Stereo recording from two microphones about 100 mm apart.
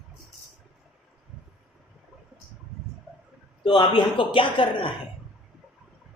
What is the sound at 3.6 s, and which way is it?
Speech, 55° left (ahead or behind).